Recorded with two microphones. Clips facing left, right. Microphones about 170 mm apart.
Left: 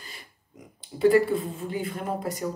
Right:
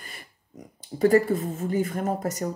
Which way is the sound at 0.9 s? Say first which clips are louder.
Even; 45° right (ahead or behind).